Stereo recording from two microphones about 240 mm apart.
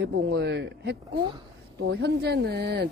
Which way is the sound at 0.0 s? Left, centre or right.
Right.